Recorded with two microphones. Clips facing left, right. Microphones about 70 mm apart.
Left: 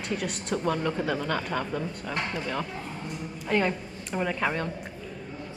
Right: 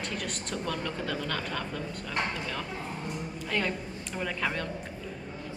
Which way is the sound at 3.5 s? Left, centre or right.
Centre.